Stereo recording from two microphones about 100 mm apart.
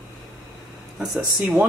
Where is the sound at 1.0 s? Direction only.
5° right (ahead or behind).